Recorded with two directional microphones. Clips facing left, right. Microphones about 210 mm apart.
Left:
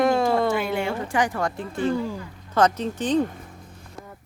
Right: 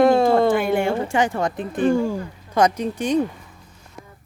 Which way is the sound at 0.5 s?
50° right (ahead or behind).